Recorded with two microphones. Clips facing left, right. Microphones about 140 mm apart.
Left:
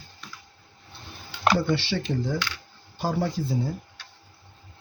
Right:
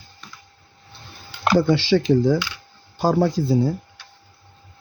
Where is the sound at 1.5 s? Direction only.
90° right.